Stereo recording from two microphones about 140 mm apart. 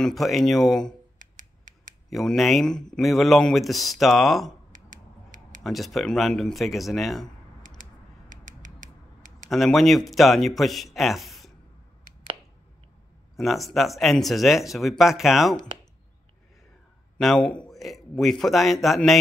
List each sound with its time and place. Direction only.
0.0 s speech: centre (ahead or behind)
1.2 s finger snapping: 65° right (ahead or behind)
2.0 s speech: centre (ahead or behind)
4.7 s scissors: 65° right (ahead or behind)
5.6 s speech: centre (ahead or behind)
8.3 s creak: 65° right (ahead or behind)
9.5 s speech: centre (ahead or behind)
13.4 s speech: centre (ahead or behind)
17.2 s speech: centre (ahead or behind)